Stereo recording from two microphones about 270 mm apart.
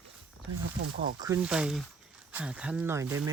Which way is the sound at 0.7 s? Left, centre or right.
Right.